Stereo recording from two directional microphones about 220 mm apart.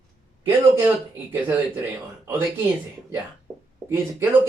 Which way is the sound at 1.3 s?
10° right (ahead or behind).